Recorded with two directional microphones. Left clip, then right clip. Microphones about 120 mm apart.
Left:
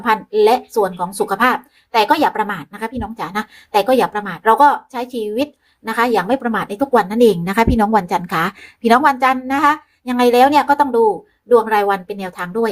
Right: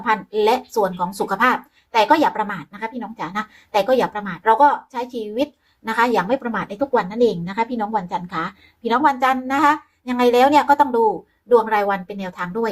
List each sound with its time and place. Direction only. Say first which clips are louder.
0.0 s a woman's voice: left 3 dB; 40° left (ahead or behind)
0.3 s a woman's voice: left 5 dB; 25° left (ahead or behind)
6.9 s a woman's voice: left 6 dB; 70° left (ahead or behind)
9.1 s speech: left 3 dB; 25° left (ahead or behind)